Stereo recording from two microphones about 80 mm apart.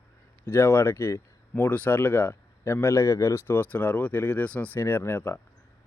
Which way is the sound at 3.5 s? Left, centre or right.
Left.